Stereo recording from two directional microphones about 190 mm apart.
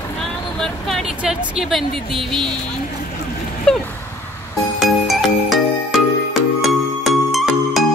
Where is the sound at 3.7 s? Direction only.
5° left (ahead or behind).